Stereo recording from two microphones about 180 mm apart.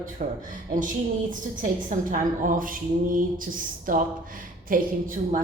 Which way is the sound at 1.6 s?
50° right (ahead or behind).